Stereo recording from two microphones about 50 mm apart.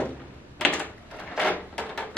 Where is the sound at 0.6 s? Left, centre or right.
Left.